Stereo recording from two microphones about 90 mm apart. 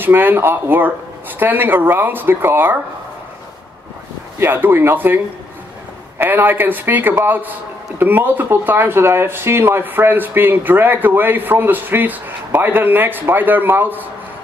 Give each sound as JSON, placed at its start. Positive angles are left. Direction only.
{"t": 0.0, "sound": "speech", "side_deg": -20}
{"t": 4.4, "sound": "speech", "side_deg": -25}